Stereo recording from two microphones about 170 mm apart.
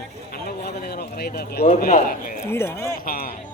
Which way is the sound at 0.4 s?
65° left (ahead or behind).